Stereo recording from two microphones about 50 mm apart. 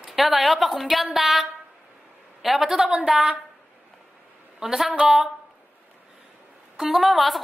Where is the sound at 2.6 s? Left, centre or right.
Centre.